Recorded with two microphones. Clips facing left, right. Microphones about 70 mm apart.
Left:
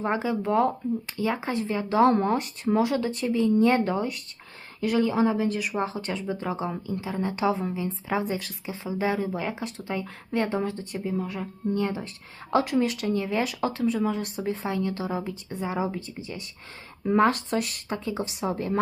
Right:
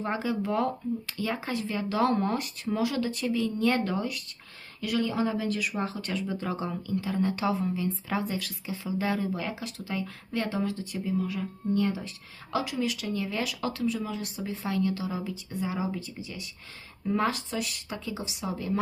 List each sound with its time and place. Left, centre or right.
0.0 s speech: left
17.2 s a woman's voice: left
17.8 s a woman's voice: left